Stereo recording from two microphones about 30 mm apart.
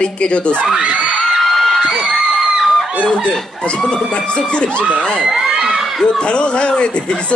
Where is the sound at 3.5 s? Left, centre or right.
Left.